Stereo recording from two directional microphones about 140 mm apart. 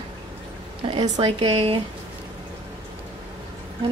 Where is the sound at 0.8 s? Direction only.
35° right (ahead or behind).